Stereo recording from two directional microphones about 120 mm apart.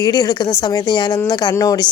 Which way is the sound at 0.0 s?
35° left (ahead or behind).